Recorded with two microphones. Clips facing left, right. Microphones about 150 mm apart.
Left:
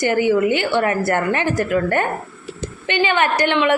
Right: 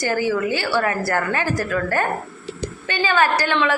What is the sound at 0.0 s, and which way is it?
A woman's voice, 20° left (ahead or behind).